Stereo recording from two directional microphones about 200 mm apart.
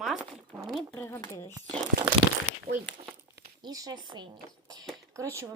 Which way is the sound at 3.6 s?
20° right (ahead or behind).